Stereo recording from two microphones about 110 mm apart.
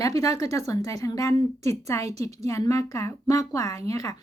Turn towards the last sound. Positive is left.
turn(degrees=35)  # may be behind; listen again after turning